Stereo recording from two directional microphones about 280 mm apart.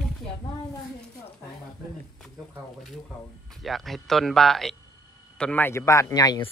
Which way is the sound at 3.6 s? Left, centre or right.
Centre.